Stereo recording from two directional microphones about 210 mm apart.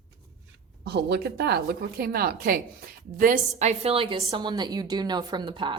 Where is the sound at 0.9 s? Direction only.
55° right (ahead or behind).